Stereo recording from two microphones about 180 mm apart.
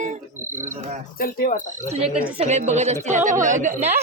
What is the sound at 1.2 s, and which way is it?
Speech, 55° left (ahead or behind).